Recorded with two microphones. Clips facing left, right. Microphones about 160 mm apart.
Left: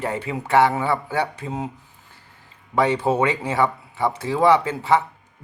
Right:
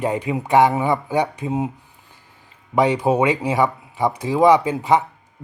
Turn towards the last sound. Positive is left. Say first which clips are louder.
# right 2 dB
turn(degrees=-15)  # may be behind; listen again after turning